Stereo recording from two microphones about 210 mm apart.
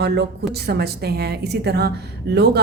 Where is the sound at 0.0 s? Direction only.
55° right (ahead or behind).